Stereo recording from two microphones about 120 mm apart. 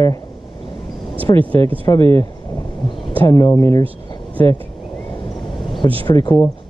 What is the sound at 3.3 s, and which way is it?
Speech, 30° left (ahead or behind).